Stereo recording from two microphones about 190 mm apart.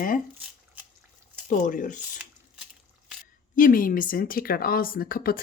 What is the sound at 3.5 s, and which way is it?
Speech, 45° left (ahead or behind).